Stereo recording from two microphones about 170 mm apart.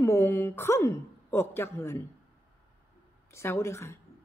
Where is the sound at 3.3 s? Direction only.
15° left (ahead or behind).